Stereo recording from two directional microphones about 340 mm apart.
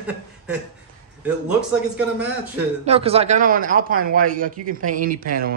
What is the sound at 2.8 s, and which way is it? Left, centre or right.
Speech, centre.